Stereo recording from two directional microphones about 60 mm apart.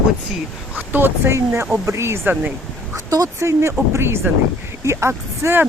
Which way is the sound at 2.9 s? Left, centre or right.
Right.